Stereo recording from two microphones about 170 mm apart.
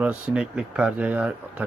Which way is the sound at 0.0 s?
5° right (ahead or behind).